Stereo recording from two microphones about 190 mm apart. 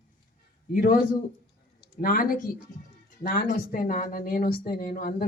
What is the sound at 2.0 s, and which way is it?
Speech, 50° left (ahead or behind).